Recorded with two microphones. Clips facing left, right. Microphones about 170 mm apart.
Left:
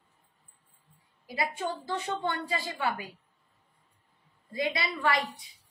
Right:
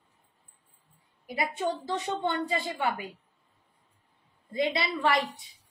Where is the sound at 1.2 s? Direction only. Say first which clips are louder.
Right 2 dB; 20° right (ahead or behind).